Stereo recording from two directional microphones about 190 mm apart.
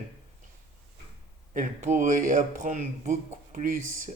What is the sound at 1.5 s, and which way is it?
Speech, 40° right (ahead or behind).